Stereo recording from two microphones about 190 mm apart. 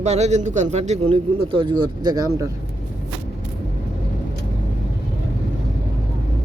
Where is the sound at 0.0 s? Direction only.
35° right (ahead or behind); by 2.5 s 20° right (ahead or behind).